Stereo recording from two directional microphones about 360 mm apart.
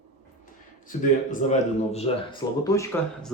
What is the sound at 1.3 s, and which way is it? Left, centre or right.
Speech, centre.